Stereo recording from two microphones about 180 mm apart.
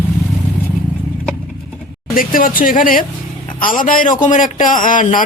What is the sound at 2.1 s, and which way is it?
A man's voice, 50° left (ahead or behind).